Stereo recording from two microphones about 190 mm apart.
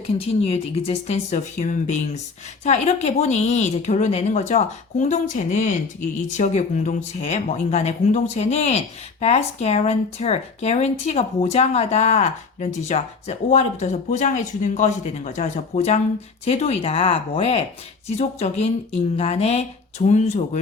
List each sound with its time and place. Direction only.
0.1 s speech: 30° left (ahead or behind)